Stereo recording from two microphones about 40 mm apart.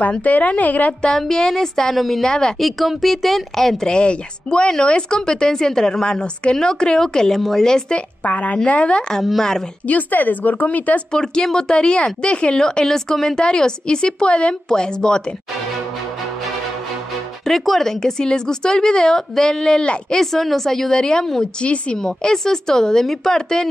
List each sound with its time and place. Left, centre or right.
0.1 s a woman's voice: left
1.2 s a woman's voice: centre
2.2 s a woman's voice: centre
2.6 s a woman's voice: centre
3.9 s a woman's voice: left
8.2 s a woman's voice: left
9.4 s a woman's voice: centre
9.8 s speech: left
11.1 s a woman's voice: centre
14.7 s a woman's voice: centre
17.5 s a woman's voice: centre
21.5 s a woman's voice: left
21.9 s a woman's voice: centre